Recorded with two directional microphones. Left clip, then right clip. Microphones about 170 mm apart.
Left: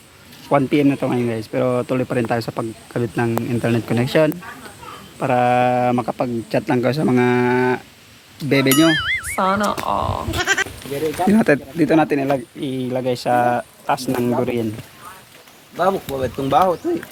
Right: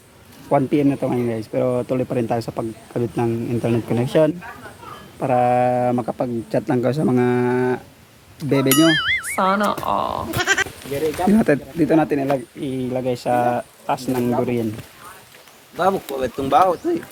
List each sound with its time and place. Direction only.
0.5 s speech: 15° left (ahead or behind)
15.8 s speech: 30° right (ahead or behind)